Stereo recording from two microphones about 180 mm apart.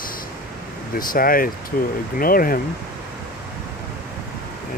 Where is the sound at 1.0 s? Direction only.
50° left (ahead or behind).